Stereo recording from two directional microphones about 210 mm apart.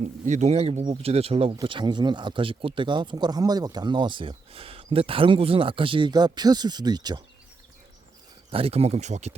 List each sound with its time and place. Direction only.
0.3 s speech: 35° right (ahead or behind)
8.4 s speech: 30° right (ahead or behind)